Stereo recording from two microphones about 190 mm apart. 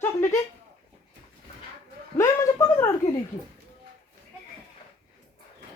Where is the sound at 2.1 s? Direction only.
15° left (ahead or behind).